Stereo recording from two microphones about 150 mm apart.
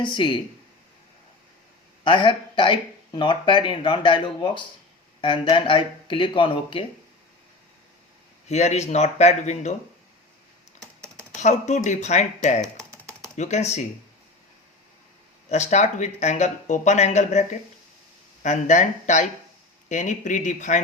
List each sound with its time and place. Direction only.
0.0 s speech: 30° left (ahead or behind)
2.0 s speech: 30° left (ahead or behind)
8.4 s speech: 45° left (ahead or behind)
11.3 s speech: 50° left (ahead or behind)
15.4 s speech: 50° left (ahead or behind)